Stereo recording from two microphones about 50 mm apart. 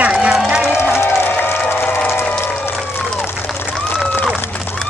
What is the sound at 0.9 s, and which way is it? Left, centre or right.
Music, left.